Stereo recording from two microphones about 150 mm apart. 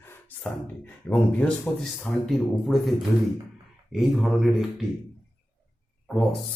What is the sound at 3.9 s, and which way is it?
Speech, centre (ahead or behind).